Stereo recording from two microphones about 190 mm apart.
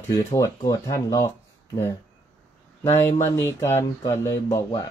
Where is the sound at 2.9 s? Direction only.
10° left (ahead or behind).